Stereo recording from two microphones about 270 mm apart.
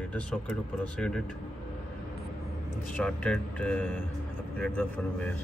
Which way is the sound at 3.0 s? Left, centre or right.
Centre.